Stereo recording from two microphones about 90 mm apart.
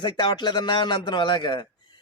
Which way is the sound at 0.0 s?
55° left (ahead or behind).